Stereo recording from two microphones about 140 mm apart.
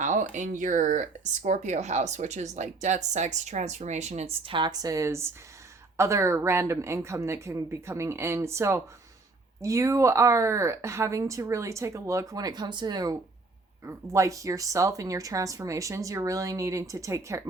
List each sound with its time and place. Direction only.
0.0 s speech: 65° right (ahead or behind); by 17.4 s 20° right (ahead or behind)